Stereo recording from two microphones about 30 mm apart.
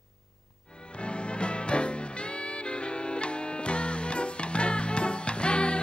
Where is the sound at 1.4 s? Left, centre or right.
Left.